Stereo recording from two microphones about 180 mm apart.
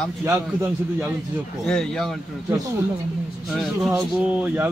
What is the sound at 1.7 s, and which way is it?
Speech, 5° left (ahead or behind).